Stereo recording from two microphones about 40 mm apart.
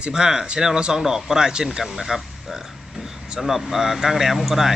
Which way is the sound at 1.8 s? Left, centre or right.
Centre.